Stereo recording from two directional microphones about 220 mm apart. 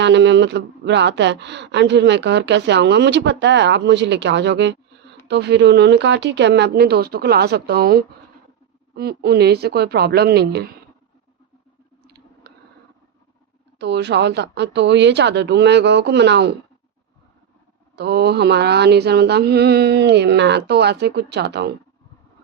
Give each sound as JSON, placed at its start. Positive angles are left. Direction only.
{"t": 0.0, "sound": "speech", "side_deg": -50}
{"t": 12.0, "sound": "a sound", "side_deg": -45}
{"t": 13.7, "sound": "speech", "side_deg": -50}
{"t": 17.9, "sound": "speech", "side_deg": -50}